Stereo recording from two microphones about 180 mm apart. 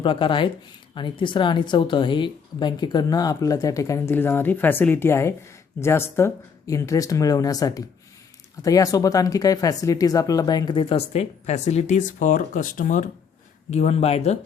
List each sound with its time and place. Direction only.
0.0 s speech: 30° left (ahead or behind)